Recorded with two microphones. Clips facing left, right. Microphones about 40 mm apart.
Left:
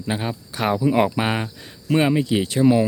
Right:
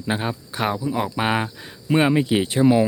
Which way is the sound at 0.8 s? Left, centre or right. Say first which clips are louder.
Left 6 dB; left.